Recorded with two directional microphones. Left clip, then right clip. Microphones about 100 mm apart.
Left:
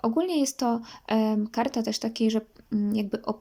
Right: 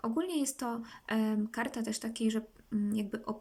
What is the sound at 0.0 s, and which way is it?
Speech, 35° left (ahead or behind).